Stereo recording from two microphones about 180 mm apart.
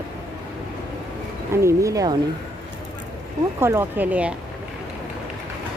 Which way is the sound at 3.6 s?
15° right (ahead or behind).